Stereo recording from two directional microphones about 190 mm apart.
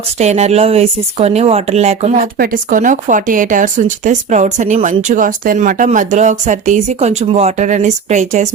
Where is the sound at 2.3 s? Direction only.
50° right (ahead or behind).